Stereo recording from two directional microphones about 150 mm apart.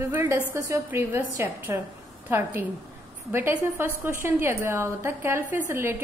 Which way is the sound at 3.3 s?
15° right (ahead or behind).